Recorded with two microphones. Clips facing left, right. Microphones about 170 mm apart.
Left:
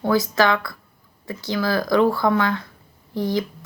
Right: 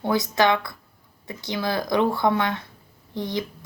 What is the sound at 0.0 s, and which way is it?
A woman's voice, 20° right (ahead or behind).